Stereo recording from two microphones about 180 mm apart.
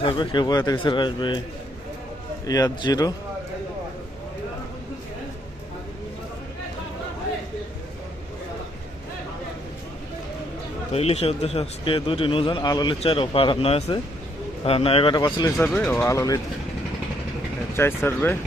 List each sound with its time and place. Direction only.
0.0 s a man's voice: 25° left (ahead or behind)
2.5 s a man's voice: 20° left (ahead or behind)
10.9 s a man's voice: 35° left (ahead or behind)
15.5 s speech: 5° left (ahead or behind)
17.7 s speech: 15° left (ahead or behind)